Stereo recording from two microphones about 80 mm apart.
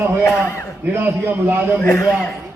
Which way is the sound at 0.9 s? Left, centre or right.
Right.